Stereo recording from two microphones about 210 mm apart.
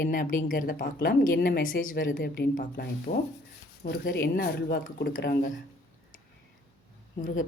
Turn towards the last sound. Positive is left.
turn(degrees=40)  # may be behind; listen again after turning